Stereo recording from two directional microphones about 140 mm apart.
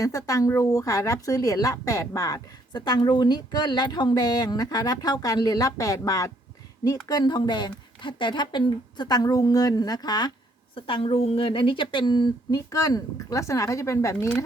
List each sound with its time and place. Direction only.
0.0 s a woman's voice: 25° left (ahead or behind)